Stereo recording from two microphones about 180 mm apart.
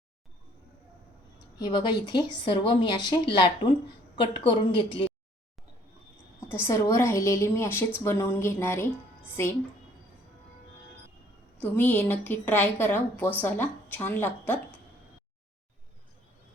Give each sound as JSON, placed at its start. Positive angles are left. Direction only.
{"t": 1.5, "sound": "a woman's voice", "side_deg": 25}
{"t": 6.5, "sound": "a woman's voice", "side_deg": 15}
{"t": 11.6, "sound": "a woman's voice", "side_deg": 10}